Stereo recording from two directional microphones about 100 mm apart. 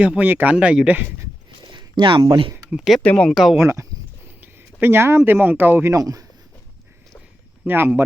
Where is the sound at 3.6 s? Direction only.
30° right (ahead or behind).